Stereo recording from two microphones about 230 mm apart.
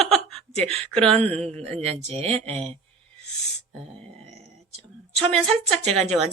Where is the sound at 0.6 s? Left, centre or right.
Right.